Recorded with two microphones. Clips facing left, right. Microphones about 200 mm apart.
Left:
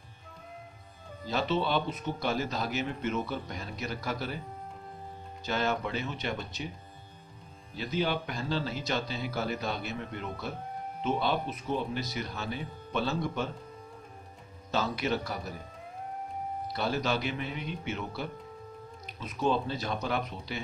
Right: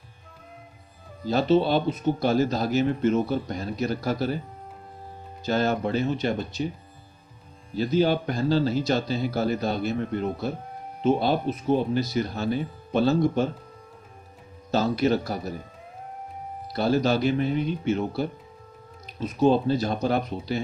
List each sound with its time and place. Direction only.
1.3 s speech: 35° right (ahead or behind)
5.4 s speech: 40° right (ahead or behind)
7.7 s speech: 35° right (ahead or behind)
14.7 s speech: 40° right (ahead or behind)
16.7 s speech: 35° right (ahead or behind)